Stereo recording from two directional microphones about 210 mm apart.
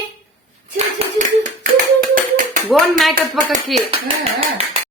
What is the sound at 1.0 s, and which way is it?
Clapping, 35° right (ahead or behind).